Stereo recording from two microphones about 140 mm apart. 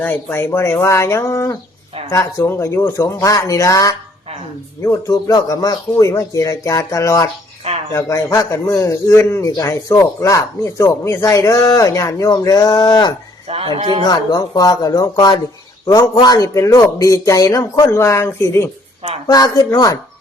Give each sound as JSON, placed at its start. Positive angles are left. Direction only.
{"t": 0.0, "sound": "speech", "side_deg": 15}
{"t": 13.5, "sound": "speech", "side_deg": -45}
{"t": 14.0, "sound": "speech", "side_deg": 30}